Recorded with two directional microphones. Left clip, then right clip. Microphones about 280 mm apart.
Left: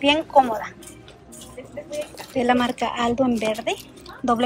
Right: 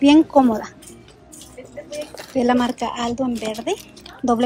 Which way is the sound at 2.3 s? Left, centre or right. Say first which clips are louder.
Right 2 dB; centre.